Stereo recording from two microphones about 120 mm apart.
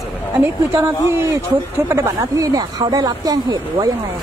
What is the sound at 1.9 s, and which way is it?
Speech, 25° right (ahead or behind).